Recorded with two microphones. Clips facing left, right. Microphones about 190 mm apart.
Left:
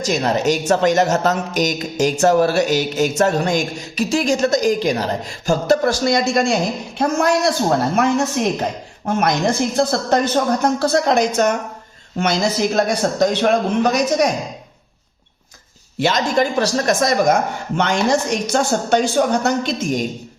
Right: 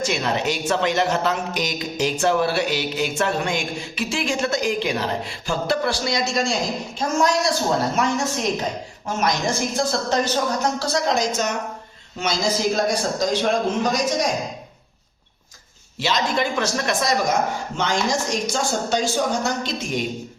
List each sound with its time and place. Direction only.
0.0 s a woman's voice: 40° left (ahead or behind); by 14.3 s 65° left (ahead or behind)
16.0 s speech: 50° left (ahead or behind)
17.7 s a woman's voice: 60° left (ahead or behind); by 20.1 s 45° left (ahead or behind)